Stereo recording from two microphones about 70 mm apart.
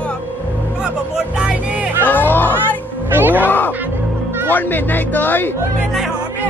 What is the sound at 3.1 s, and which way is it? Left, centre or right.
Speech, right.